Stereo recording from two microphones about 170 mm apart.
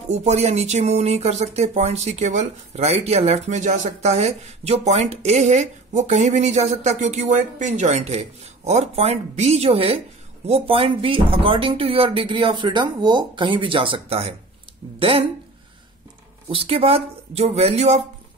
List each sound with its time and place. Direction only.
0.1 s speech: 40° right (ahead or behind)
16.4 s speech: 35° right (ahead or behind)